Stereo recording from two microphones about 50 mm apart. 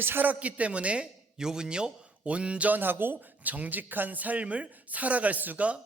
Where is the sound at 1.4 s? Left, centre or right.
Centre; by 5.8 s right.